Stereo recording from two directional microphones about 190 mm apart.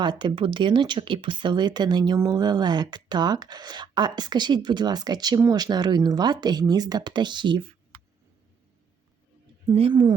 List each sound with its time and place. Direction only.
0.0 s speech: 25° right (ahead or behind)
9.6 s speech: 25° right (ahead or behind)